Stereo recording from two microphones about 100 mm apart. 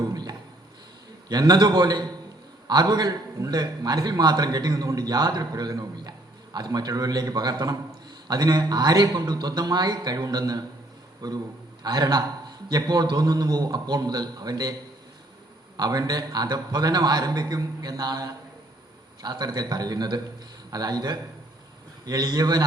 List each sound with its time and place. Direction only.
0.1 s a sound: 40° right (ahead or behind)
1.3 s a man's voice: 40° right (ahead or behind)
15.8 s a man's voice: 40° right (ahead or behind)